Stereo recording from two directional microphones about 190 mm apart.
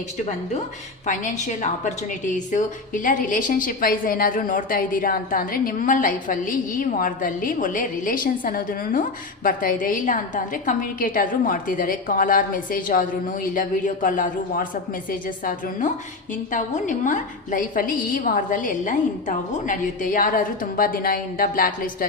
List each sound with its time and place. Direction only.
1.0 s a woman's voice: 40° left (ahead or behind)